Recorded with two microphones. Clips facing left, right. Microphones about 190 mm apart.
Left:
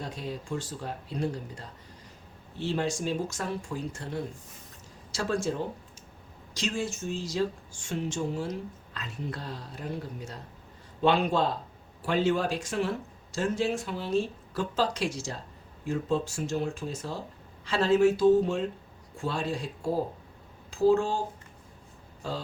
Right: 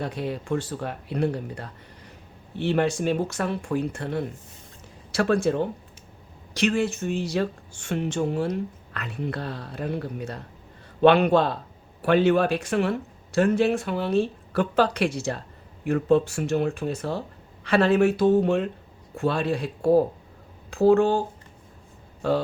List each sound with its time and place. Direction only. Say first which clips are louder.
0.0 s speech: right 7 dB; 65° right (ahead or behind)